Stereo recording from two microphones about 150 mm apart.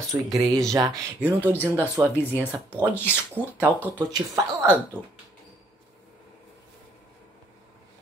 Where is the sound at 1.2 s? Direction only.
15° right (ahead or behind).